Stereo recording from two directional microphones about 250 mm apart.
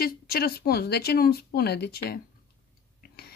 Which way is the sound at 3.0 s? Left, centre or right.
Left.